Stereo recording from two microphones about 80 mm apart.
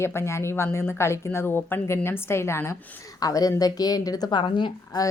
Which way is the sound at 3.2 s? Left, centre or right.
Left.